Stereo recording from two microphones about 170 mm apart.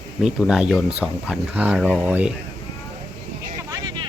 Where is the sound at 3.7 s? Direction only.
25° right (ahead or behind).